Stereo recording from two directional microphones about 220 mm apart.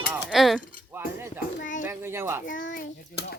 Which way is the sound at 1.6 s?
35° left (ahead or behind).